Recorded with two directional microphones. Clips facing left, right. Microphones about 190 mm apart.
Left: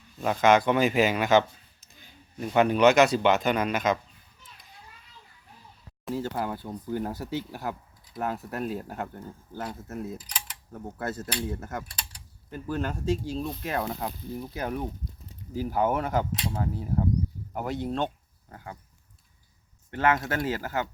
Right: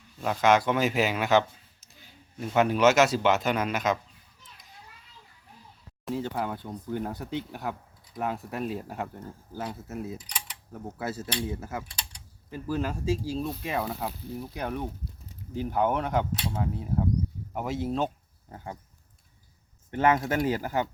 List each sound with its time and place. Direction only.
0.2 s a man's voice: centre (ahead or behind)
6.3 s speech: centre (ahead or behind)
18.4 s speech: 25° right (ahead or behind)
19.9 s speech: 20° right (ahead or behind)